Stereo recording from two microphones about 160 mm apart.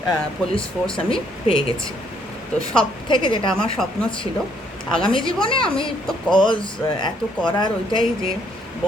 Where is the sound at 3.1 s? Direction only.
30° left (ahead or behind).